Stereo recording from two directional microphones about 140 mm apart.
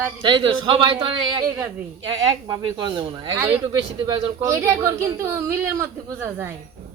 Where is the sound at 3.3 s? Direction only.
20° right (ahead or behind).